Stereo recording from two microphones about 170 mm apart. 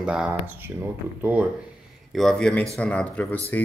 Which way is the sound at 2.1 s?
5° left (ahead or behind).